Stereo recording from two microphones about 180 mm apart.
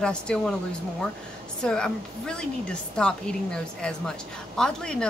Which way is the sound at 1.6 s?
5° left (ahead or behind).